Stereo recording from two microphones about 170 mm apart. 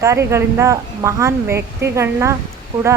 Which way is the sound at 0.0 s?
15° right (ahead or behind).